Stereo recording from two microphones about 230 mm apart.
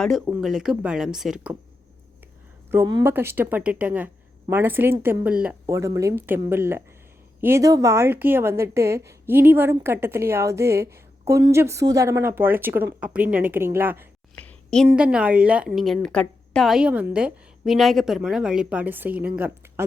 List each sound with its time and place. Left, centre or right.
0.0 s a woman's voice: centre
2.6 s speech: centre
14.3 s a sound: centre
14.8 s a woman's voice: centre